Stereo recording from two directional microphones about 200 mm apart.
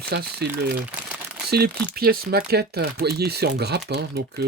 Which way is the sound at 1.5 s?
55° right (ahead or behind).